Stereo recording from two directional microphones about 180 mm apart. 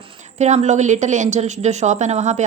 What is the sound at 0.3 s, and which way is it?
A woman's voice, 40° right (ahead or behind).